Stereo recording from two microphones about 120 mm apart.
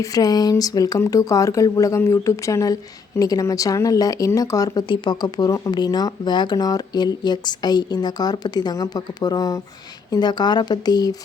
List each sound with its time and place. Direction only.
0.0 s speech: 30° left (ahead or behind)